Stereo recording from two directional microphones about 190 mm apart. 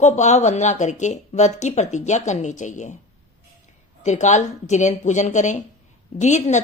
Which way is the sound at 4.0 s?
40° left (ahead or behind).